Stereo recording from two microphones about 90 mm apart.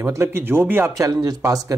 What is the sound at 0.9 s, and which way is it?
Speech, 40° right (ahead or behind).